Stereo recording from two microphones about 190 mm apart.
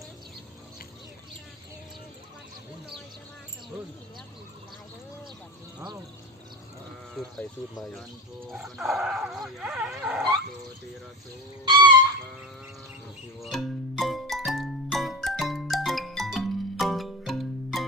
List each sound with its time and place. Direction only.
7.2 s speech: centre (ahead or behind)
11.6 s fowl: 25° right (ahead or behind)
13.4 s music: centre (ahead or behind)